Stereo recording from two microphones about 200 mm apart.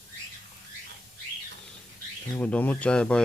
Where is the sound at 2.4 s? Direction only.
5° left (ahead or behind).